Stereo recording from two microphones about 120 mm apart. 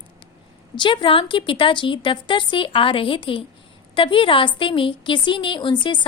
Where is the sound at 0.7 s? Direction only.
40° left (ahead or behind).